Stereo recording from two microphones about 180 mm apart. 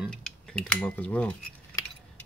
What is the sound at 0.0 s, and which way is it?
Cutlery, 5° left (ahead or behind).